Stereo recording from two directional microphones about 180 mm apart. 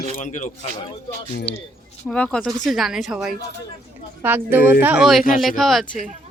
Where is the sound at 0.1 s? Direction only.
40° left (ahead or behind).